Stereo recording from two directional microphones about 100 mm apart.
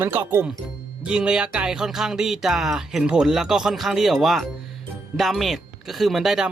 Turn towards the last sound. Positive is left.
turn(degrees=-5)  # may be behind; listen again after turning